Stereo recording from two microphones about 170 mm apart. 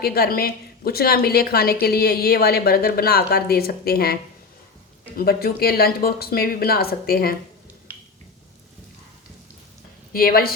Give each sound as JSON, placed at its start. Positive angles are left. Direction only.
{"t": 0.0, "sound": "a woman's voice", "side_deg": 65}
{"t": 10.1, "sound": "speech", "side_deg": 60}